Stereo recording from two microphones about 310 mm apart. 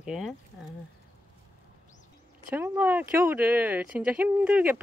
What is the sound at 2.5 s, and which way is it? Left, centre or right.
Speech, centre.